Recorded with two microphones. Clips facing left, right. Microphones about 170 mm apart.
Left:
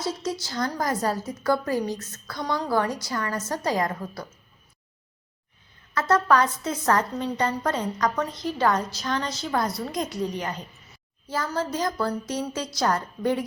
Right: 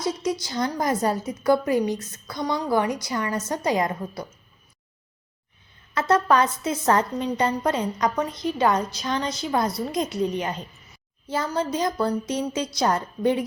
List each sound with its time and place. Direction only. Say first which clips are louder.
0.0 s a woman's voice: right 3 dB; 15° right (ahead or behind)
5.9 s a woman's voice: right 1 dB; 20° right (ahead or behind)